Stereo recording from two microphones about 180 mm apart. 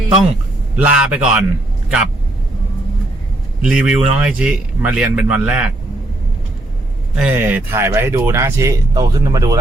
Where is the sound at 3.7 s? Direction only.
5° right (ahead or behind).